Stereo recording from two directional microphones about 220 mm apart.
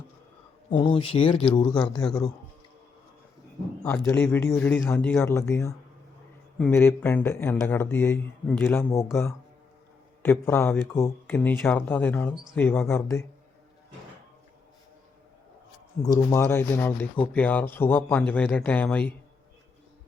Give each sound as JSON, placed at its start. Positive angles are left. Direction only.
{"t": 0.8, "sound": "speech", "side_deg": 20}
{"t": 3.8, "sound": "speech", "side_deg": 10}
{"t": 10.2, "sound": "speech", "side_deg": 10}
{"t": 16.0, "sound": "speech", "side_deg": 15}